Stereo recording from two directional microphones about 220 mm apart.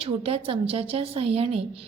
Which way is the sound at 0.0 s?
25° right (ahead or behind).